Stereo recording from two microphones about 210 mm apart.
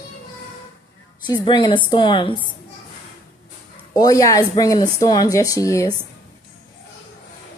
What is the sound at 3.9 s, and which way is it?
Speech, 15° left (ahead or behind).